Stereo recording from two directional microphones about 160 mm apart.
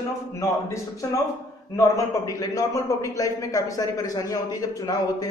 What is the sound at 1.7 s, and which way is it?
A man's voice, 20° left (ahead or behind).